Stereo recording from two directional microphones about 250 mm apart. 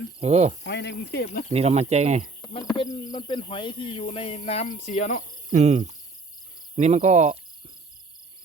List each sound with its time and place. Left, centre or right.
0.2 s speech: right
0.6 s speech: left
1.5 s speech: right
2.4 s a sound: centre
2.7 s speech: centre
5.5 s speech: right